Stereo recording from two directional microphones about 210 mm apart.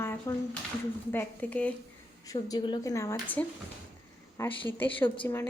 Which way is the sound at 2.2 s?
20° left (ahead or behind).